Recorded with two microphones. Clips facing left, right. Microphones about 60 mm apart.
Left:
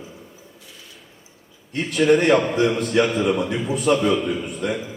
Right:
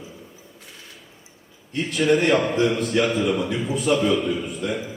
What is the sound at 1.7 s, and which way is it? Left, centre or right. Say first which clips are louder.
A man's voice: left 3 dB; left.